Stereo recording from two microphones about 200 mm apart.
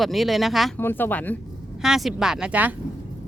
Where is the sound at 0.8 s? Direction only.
10° left (ahead or behind); by 2.7 s 5° right (ahead or behind).